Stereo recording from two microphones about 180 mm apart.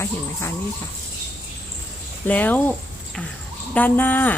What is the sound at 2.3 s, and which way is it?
Speech, 10° left (ahead or behind).